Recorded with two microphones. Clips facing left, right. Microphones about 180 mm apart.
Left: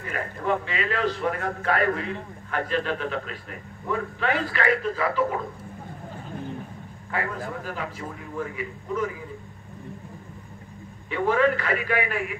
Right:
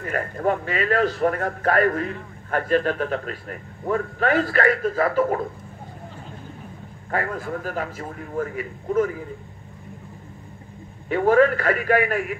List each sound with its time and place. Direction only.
0.0 s a man's voice: 45° right (ahead or behind)
7.1 s a man's voice: 45° right (ahead or behind)
11.1 s a man's voice: 45° right (ahead or behind)